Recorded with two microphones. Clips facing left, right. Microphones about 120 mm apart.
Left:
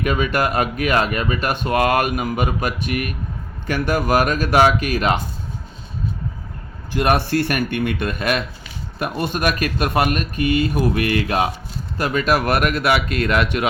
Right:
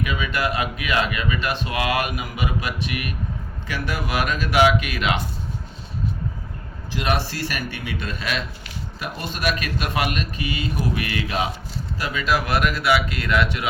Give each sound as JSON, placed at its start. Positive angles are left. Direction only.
{"t": 0.0, "sound": "speech", "side_deg": 50}
{"t": 6.9, "sound": "speech", "side_deg": 50}